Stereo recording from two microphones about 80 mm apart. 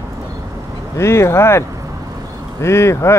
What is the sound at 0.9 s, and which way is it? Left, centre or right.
Speech, left.